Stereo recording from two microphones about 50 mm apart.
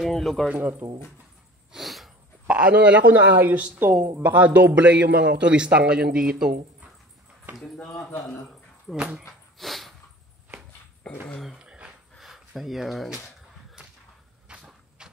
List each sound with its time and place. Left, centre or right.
0.0 s speech: centre
0.6 s speech: right
1.7 s sneeze: centre
2.4 s a man's voice: right
4.7 s a man's voice: right
5.0 s speech: right
5.5 s a man's voice: right
7.6 s speech: centre
8.9 s a man's voice: right
9.6 s a sound: centre
11.1 s speech: left
11.6 s a sound: centre
12.2 s speech: centre
14.6 s a sound: centre